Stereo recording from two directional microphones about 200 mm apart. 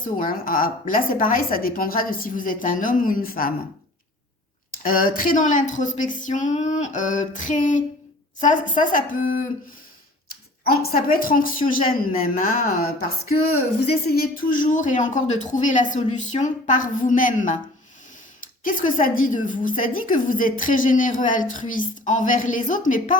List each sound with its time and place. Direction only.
0.0 s a woman's voice: 45° left (ahead or behind)
4.8 s a woman's voice: 45° left (ahead or behind)
10.6 s a woman's voice: 50° left (ahead or behind)
14.1 s speech: 45° left (ahead or behind)
18.6 s a woman's voice: 45° left (ahead or behind)